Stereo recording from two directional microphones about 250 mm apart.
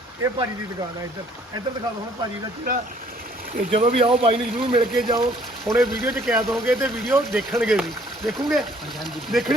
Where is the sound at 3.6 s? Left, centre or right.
Right.